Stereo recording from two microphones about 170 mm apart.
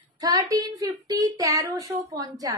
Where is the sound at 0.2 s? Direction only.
20° right (ahead or behind).